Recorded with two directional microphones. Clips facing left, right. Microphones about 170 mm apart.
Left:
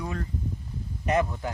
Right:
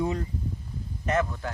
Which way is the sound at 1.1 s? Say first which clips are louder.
Left 1 dB; 15° left (ahead or behind).